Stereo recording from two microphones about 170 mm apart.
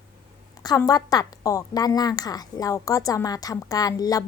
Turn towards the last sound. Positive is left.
turn(degrees=20)  # may be behind; listen again after turning